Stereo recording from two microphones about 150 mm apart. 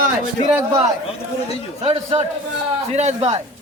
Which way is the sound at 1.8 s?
45° right (ahead or behind).